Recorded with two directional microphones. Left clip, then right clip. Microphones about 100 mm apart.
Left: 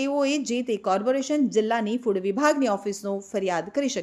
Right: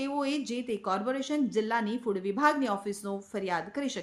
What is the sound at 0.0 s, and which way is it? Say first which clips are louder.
A woman's voice: left 7 dB; 45° left (ahead or behind).